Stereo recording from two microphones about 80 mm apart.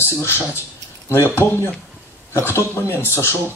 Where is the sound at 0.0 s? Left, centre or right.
Left.